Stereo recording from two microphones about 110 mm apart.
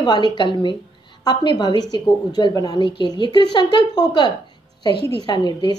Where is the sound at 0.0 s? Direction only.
40° left (ahead or behind).